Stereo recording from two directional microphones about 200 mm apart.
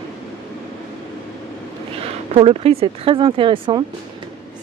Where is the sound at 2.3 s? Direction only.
30° right (ahead or behind).